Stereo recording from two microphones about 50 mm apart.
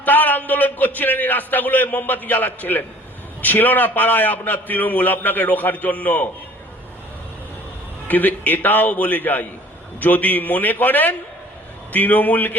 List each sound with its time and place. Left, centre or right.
0.0 s a man's voice: left
8.0 s a man's voice: left